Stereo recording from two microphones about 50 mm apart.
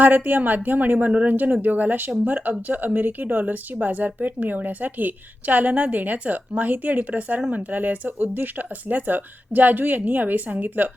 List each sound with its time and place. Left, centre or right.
0.0 s speech: right